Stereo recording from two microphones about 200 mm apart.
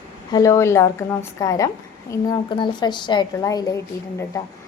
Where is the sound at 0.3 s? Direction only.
15° left (ahead or behind).